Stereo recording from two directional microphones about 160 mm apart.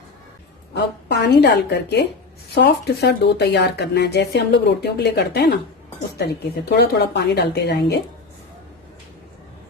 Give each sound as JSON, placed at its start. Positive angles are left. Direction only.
{"t": 0.7, "sound": "speech", "side_deg": 90}
{"t": 6.7, "sound": "speech", "side_deg": 90}